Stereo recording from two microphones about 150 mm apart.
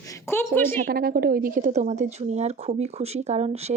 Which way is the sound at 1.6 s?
55° right (ahead or behind).